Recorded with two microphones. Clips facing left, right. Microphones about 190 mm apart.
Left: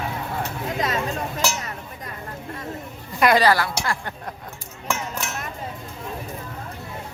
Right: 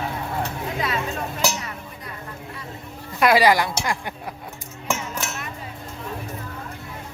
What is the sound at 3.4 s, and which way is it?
Speech, 15° right (ahead or behind).